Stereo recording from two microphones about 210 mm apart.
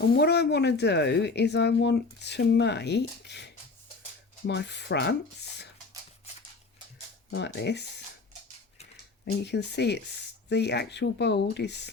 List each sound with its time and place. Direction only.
0.2 s speech: 50° left (ahead or behind)
7.3 s speech: 55° left (ahead or behind)
9.4 s speech: 55° left (ahead or behind)